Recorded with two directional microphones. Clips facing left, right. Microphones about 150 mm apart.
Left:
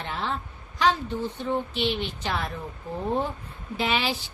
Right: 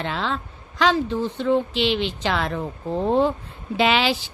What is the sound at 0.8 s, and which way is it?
A woman's voice, 90° right.